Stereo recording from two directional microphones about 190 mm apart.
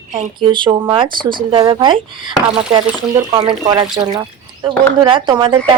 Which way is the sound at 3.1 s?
25° right (ahead or behind).